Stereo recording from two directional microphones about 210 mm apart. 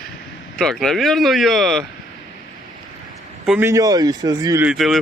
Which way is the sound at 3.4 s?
10° right (ahead or behind).